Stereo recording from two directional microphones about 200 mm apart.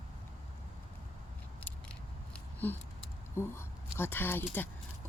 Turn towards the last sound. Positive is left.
turn(degrees=10)  # may be behind; listen again after turning